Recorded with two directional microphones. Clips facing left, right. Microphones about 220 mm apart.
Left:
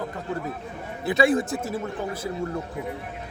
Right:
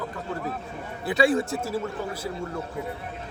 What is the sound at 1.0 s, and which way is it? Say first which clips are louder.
A man's voice: left 1 dB; 20° left (ahead or behind).